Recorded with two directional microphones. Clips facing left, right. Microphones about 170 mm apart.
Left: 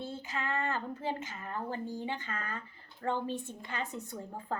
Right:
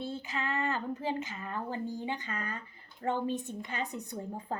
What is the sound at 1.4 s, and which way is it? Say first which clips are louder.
Speech: right 1 dB; 20° right (ahead or behind).